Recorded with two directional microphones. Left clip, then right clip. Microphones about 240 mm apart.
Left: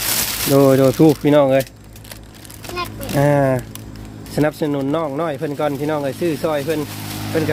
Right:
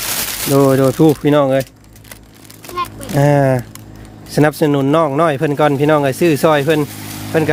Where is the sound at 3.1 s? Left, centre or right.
Right.